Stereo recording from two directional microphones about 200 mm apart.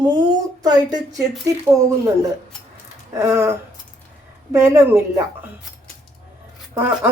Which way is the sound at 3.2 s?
15° right (ahead or behind).